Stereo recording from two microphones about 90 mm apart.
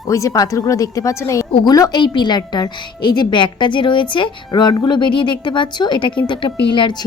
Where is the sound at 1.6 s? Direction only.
45° left (ahead or behind).